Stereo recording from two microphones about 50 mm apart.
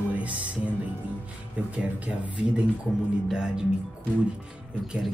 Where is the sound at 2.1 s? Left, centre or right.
Centre.